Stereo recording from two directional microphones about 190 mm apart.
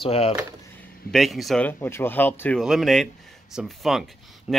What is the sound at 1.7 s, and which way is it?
Speech, 15° left (ahead or behind).